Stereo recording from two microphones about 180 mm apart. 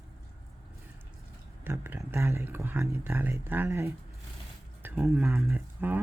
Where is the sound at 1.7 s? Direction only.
15° right (ahead or behind).